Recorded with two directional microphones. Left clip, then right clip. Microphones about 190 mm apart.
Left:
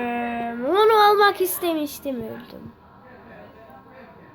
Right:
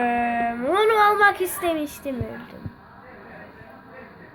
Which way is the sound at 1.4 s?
15° left (ahead or behind).